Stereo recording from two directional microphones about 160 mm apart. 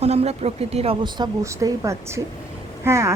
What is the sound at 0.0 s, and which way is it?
Speech, 40° right (ahead or behind).